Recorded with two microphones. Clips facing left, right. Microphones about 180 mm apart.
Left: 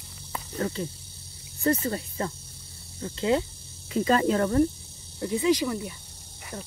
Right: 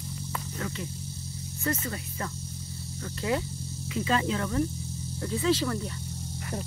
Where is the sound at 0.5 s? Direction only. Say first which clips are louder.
Left 9 dB; 35° left (ahead or behind).